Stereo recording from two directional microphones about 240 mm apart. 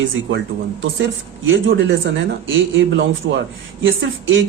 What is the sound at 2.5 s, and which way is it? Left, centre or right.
Speech, right.